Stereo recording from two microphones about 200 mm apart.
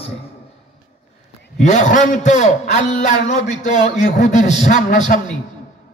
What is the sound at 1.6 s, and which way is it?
A man's voice, 35° left (ahead or behind).